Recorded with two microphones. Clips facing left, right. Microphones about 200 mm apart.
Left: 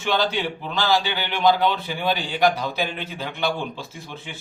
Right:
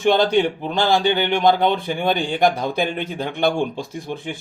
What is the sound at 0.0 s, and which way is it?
A man's voice, 50° right (ahead or behind).